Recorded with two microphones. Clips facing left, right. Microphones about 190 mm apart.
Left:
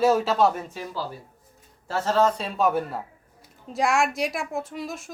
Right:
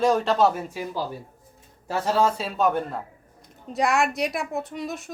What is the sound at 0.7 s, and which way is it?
A man's voice, 15° right (ahead or behind).